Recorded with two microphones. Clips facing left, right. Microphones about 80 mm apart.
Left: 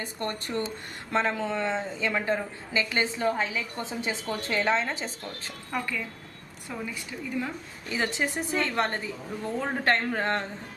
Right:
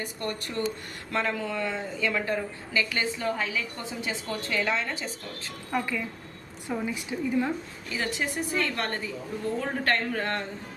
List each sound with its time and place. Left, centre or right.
0.0 s a woman's voice: left
5.7 s a woman's voice: centre
7.9 s a woman's voice: left